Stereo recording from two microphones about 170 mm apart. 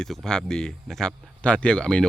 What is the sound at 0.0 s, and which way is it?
Speech, centre (ahead or behind).